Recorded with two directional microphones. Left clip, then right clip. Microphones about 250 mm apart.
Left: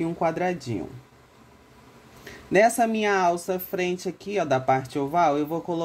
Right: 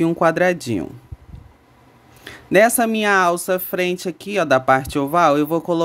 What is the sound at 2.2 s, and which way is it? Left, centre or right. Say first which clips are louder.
Speech: right 5 dB; centre.